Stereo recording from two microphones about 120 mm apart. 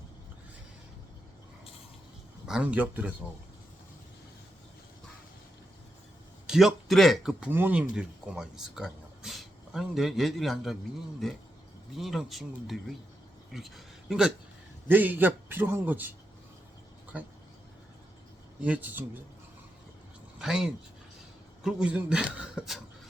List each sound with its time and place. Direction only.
2.5 s a man's voice: 10° right (ahead or behind)
6.5 s speech: centre (ahead or behind)
11.9 s a man's voice: centre (ahead or behind)
14.8 s a man's voice: 15° right (ahead or behind)
18.6 s a man's voice: 15° right (ahead or behind)
20.4 s a man's voice: 5° right (ahead or behind)